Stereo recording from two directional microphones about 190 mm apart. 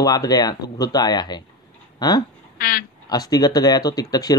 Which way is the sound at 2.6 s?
50° left (ahead or behind).